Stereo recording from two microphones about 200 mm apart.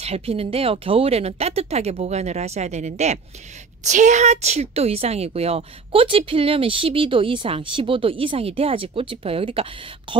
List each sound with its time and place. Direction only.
0.0 s a woman's voice: 30° right (ahead or behind)